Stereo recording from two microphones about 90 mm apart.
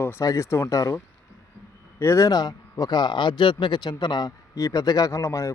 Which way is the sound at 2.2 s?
45° left (ahead or behind).